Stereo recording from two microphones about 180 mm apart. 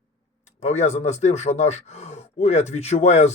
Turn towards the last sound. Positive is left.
turn(degrees=40)  # may be behind; listen again after turning